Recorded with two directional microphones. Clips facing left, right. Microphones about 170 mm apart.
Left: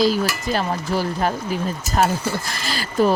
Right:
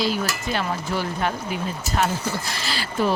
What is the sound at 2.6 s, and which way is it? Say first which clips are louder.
Speech: left 7 dB; 45° left (ahead or behind).